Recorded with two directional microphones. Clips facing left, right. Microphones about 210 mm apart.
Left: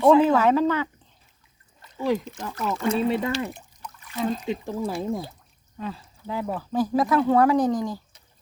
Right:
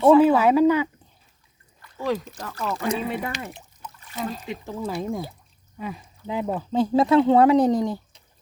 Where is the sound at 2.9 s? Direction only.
15° right (ahead or behind).